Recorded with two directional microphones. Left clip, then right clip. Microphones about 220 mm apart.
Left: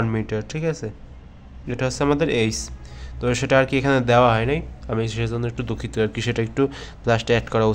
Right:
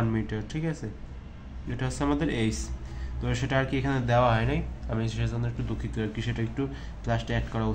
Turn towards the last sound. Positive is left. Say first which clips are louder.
# left 13 dB
turn(degrees=50)  # may be behind; listen again after turning